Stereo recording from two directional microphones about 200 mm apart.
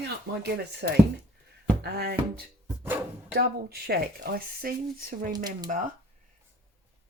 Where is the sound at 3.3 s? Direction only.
50° right (ahead or behind).